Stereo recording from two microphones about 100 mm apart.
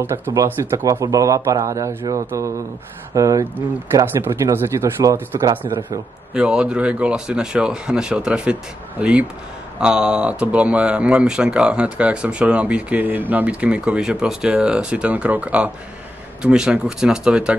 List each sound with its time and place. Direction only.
0.3 s a man's voice: 40° right (ahead or behind)
3.9 s speech: 25° right (ahead or behind)
6.3 s speech: 10° right (ahead or behind)
9.8 s speech: 10° right (ahead or behind)